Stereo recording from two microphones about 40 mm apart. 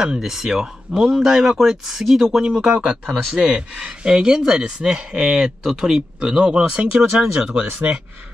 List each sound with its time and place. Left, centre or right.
0.0 s speech: centre
3.3 s speech: centre